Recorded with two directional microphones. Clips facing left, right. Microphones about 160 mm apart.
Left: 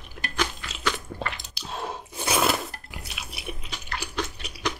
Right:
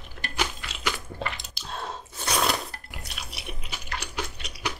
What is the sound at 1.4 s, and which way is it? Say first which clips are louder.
Drip: left 2 dB; centre (ahead or behind).